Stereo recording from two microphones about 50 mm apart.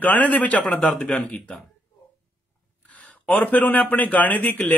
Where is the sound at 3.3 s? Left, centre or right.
Left.